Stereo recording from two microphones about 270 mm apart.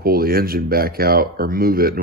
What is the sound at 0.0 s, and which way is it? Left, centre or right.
Speech, right.